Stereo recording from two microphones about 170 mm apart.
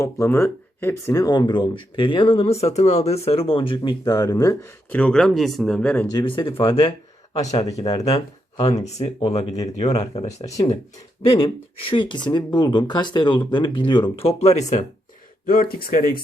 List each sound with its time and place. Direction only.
0.0 s speech: 15° left (ahead or behind)
4.9 s speech: 5° left (ahead or behind)
6.1 s speech: 25° left (ahead or behind)
7.7 s speech: 20° left (ahead or behind)
8.7 s speech: 40° left (ahead or behind)
15.4 s speech: 60° left (ahead or behind)